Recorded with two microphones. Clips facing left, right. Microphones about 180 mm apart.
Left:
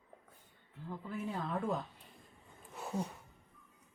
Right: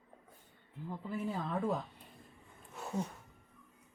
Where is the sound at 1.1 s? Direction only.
Centre (ahead or behind).